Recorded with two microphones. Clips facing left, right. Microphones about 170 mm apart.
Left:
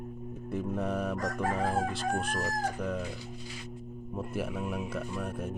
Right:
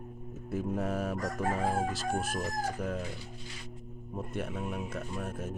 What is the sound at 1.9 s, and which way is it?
Speech, 5° right (ahead or behind).